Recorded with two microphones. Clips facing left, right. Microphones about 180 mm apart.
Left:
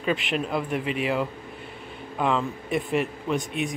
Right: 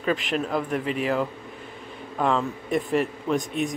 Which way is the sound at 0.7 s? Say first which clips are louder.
Even; 40° right (ahead or behind).